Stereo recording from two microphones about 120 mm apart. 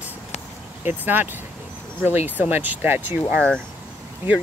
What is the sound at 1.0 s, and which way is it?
Speech, 15° right (ahead or behind).